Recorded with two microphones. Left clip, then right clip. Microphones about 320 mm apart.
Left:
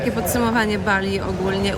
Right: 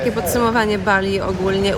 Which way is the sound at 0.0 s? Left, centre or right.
Centre.